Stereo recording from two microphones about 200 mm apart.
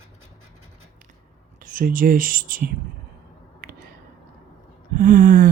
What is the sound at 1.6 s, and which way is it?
Speech, 45° right (ahead or behind).